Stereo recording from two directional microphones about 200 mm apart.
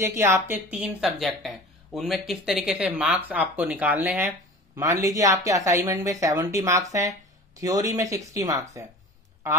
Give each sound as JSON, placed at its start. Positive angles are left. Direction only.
{"t": 0.0, "sound": "speech", "side_deg": -15}